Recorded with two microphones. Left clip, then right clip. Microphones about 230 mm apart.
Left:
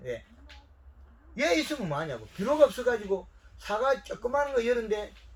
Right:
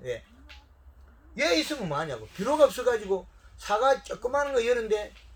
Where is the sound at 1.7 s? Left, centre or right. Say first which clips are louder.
Right 2 dB; right.